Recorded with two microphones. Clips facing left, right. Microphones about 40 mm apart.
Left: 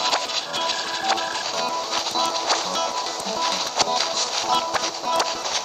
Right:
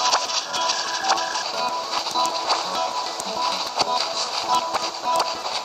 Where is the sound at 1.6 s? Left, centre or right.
Left.